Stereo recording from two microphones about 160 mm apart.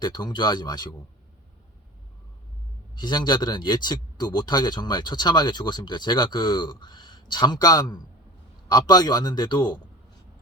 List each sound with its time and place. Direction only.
0.0 s a man's voice: 25° left (ahead or behind)
2.9 s a man's voice: 25° left (ahead or behind)